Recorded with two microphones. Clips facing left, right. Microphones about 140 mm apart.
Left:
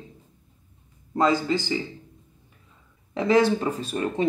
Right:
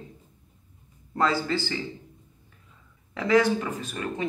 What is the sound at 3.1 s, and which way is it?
Speech, 25° left (ahead or behind).